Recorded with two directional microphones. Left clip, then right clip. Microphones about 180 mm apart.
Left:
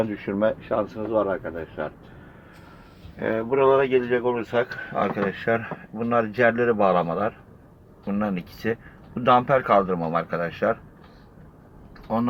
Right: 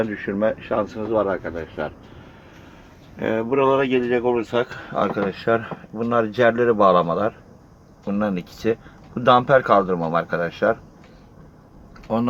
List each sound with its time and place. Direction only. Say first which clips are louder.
0.0 s speech: right 2 dB; 15° left (ahead or behind)
0.7 s speech: right 2 dB; 5° right (ahead or behind)
3.2 s speech: right 2 dB; 20° right (ahead or behind)